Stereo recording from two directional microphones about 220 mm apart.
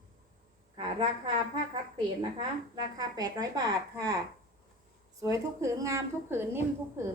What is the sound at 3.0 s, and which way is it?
A woman's voice, 15° right (ahead or behind).